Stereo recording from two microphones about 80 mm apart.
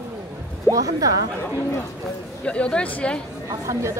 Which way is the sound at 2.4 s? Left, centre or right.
Centre.